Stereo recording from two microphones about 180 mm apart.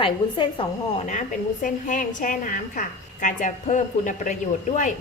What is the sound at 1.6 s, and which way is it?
A woman's voice, 45° left (ahead or behind).